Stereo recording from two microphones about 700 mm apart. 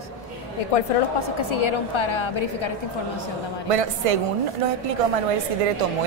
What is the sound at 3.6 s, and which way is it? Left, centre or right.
Speech, right.